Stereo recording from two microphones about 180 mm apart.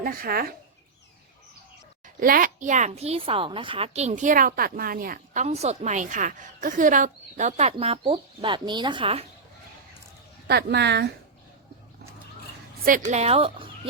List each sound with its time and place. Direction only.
0.0 s speech: 55° right (ahead or behind)
2.2 s a woman's voice: 50° right (ahead or behind); by 9.2 s 30° right (ahead or behind)
10.4 s speech: 65° right (ahead or behind)
13.1 s a woman's voice: 35° right (ahead or behind)